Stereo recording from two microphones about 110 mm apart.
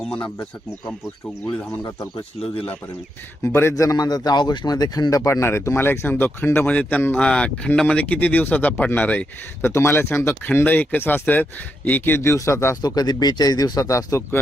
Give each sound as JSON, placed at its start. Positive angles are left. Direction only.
{"t": 0.0, "sound": "speech", "side_deg": 10}
{"t": 3.4, "sound": "speech", "side_deg": 25}
{"t": 12.8, "sound": "speech", "side_deg": 40}